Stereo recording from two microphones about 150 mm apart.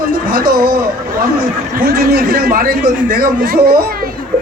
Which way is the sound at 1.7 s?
90° right.